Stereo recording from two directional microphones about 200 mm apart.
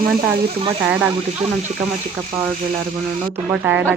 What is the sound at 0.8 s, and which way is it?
Speech, 5° right (ahead or behind).